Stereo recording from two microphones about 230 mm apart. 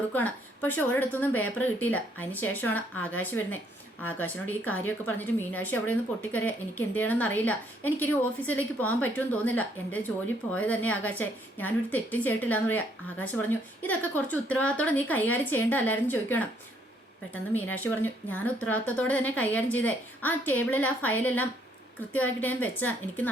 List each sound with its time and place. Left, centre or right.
0.1 s a woman's voice: centre
17.7 s a woman's voice: centre